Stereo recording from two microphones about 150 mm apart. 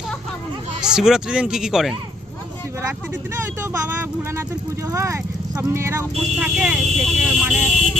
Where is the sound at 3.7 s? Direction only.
15° right (ahead or behind).